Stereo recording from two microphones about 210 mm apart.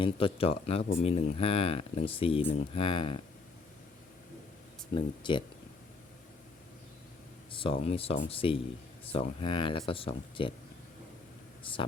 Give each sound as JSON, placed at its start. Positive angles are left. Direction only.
{"t": 0.0, "sound": "speech", "side_deg": 25}
{"t": 4.9, "sound": "speech", "side_deg": 25}
{"t": 7.5, "sound": "speech", "side_deg": 25}
{"t": 11.6, "sound": "speech", "side_deg": 25}